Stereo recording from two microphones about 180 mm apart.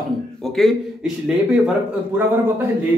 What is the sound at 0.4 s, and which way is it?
A man's voice, centre (ahead or behind).